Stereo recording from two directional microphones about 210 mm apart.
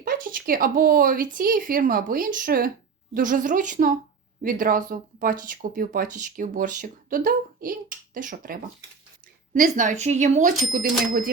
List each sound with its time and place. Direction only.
0.0 s speech: 40° right (ahead or behind)